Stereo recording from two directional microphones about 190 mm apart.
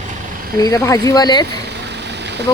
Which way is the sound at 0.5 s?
20° left (ahead or behind).